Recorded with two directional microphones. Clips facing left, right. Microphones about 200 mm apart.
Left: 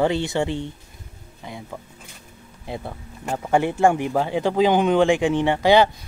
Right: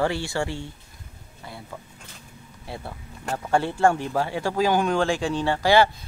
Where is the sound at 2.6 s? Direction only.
15° left (ahead or behind).